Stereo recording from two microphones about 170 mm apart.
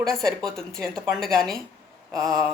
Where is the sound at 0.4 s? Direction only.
Centre (ahead or behind).